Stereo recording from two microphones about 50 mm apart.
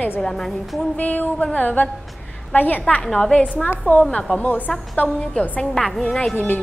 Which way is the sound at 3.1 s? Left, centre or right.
Centre.